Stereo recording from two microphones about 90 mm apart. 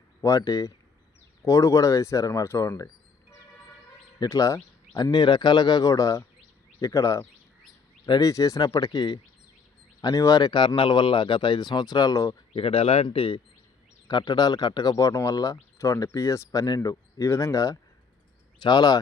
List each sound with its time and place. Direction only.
0.2 s speech: 40° left (ahead or behind)
4.2 s speech: 40° left (ahead or behind)
5.1 s speech: 55° left (ahead or behind)
10.8 s speech: 70° left (ahead or behind); by 12.4 s 40° left (ahead or behind)
12.5 s speech: 90° left; by 13.4 s 70° left (ahead or behind)
14.1 s speech: 55° left (ahead or behind); by 17.7 s 40° left (ahead or behind)
18.6 s speech: 50° left (ahead or behind)